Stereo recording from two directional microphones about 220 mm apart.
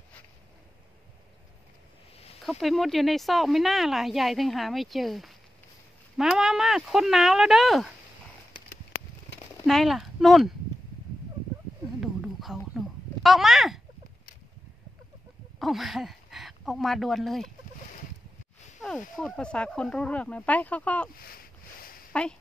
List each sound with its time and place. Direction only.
2.4 s speech: centre (ahead or behind)
9.7 s speech: centre (ahead or behind)
12.0 s a sound: centre (ahead or behind)
15.6 s speech: centre (ahead or behind)
18.8 s speech: centre (ahead or behind)
21.2 s a sound: 40° left (ahead or behind)
22.1 s speech: 5° left (ahead or behind)